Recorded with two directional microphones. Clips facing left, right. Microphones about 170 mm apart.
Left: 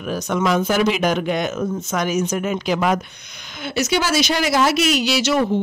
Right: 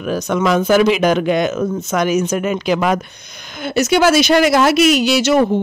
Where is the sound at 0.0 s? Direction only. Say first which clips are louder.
Right 4 dB; 90° right; by 3.0 s 75° right (ahead or behind).